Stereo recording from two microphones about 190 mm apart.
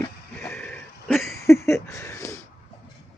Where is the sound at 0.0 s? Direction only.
10° left (ahead or behind).